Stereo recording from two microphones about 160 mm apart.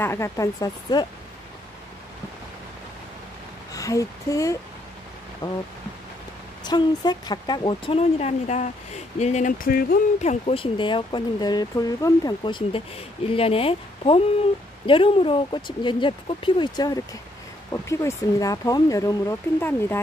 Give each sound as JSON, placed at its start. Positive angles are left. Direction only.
{"t": 0.0, "sound": "speech", "side_deg": 15}
{"t": 3.7, "sound": "speech", "side_deg": 20}
{"t": 6.6, "sound": "speech", "side_deg": 25}
{"t": 10.2, "sound": "speech", "side_deg": 35}